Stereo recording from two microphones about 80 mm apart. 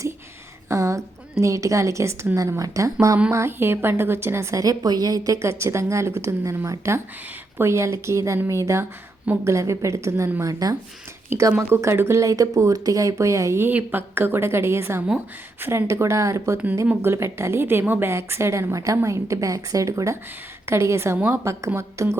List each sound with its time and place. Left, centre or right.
0.7 s a woman's voice: right
3.3 s a woman's voice: right
4.6 s a woman's voice: right
10.4 s speech: right
11.3 s a woman's voice: right
13.7 s a woman's voice: right
21.8 s a woman's voice: right